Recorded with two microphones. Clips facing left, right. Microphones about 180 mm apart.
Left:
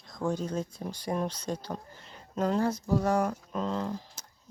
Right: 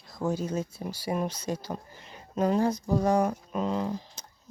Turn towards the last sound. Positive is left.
turn(degrees=-15)  # may be behind; listen again after turning